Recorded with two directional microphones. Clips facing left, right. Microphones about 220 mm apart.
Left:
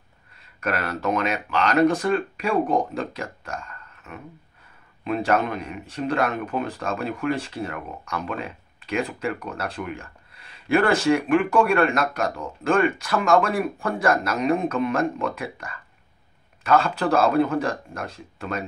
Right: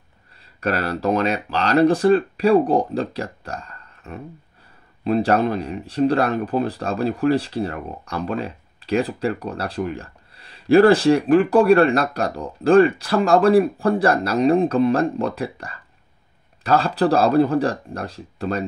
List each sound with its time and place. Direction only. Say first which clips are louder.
0.6 s speech: right 4 dB; 35° right (ahead or behind)